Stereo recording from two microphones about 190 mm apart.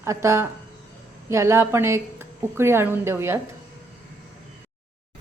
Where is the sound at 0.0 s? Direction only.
15° right (ahead or behind).